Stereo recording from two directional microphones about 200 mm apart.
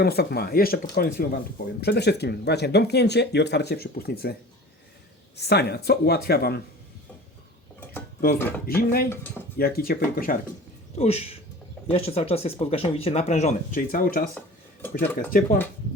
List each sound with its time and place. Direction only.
0.0 s speech: 55° left (ahead or behind)
5.5 s speech: 55° left (ahead or behind)
8.4 s speech: 10° left (ahead or behind)
8.8 s speech: 50° left (ahead or behind)
10.9 s speech: 30° left (ahead or behind)
14.3 s a sound: 10° left (ahead or behind)
14.9 s speech: 45° left (ahead or behind)